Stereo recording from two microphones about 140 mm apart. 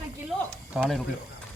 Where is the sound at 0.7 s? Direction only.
5° right (ahead or behind).